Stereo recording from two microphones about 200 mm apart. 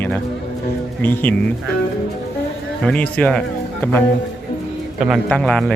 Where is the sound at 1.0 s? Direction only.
10° left (ahead or behind).